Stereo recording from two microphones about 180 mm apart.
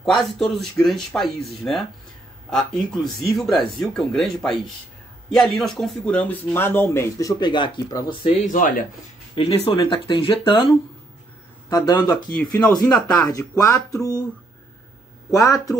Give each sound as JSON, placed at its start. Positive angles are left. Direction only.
{"t": 0.0, "sound": "speech", "side_deg": 0}
{"t": 8.5, "sound": "speech", "side_deg": 50}
{"t": 9.3, "sound": "speech", "side_deg": 30}
{"t": 11.7, "sound": "speech", "side_deg": 20}
{"t": 12.9, "sound": "speech", "side_deg": 5}
{"t": 13.3, "sound": "speech", "side_deg": 15}
{"t": 15.3, "sound": "speech", "side_deg": 20}